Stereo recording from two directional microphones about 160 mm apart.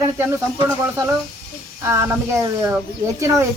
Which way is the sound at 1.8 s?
15° right (ahead or behind).